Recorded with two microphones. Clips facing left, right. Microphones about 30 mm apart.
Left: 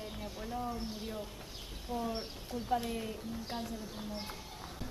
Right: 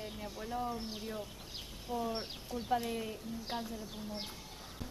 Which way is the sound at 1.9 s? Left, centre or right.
Left.